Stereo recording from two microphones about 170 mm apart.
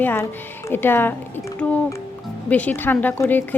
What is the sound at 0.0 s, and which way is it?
Speech, 10° left (ahead or behind).